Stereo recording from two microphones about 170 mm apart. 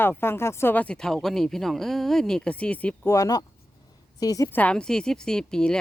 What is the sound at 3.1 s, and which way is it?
Speech, 20° left (ahead or behind).